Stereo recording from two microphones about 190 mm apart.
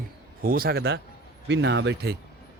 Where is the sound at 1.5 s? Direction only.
70° right (ahead or behind).